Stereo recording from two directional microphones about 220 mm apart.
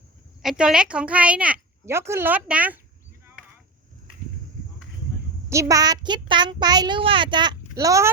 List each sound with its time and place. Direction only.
0.4 s a woman's voice: 5° right (ahead or behind)
5.5 s a child's voice: 15° right (ahead or behind)